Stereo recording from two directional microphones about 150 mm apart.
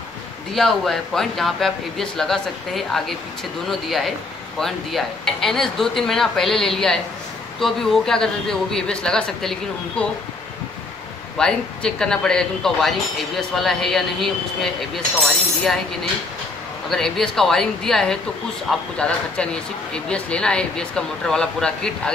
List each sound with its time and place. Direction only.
0.5 s speech: centre (ahead or behind)
4.6 s speech: centre (ahead or behind)
11.3 s speech: 5° left (ahead or behind)
16.9 s speech: 5° left (ahead or behind)